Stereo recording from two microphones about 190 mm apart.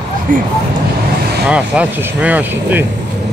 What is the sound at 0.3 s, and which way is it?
Speech, 45° right (ahead or behind).